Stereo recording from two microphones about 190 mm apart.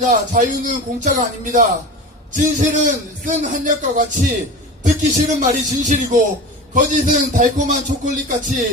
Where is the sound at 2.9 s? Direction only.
45° right (ahead or behind).